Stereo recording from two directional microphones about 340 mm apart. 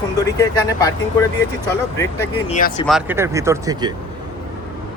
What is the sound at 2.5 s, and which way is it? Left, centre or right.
Speech, left.